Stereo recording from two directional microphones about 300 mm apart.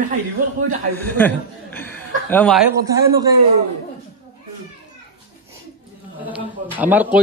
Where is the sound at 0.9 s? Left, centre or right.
Centre.